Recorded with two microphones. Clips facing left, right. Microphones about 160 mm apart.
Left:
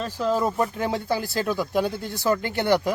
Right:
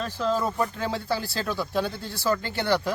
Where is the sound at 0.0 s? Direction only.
10° left (ahead or behind).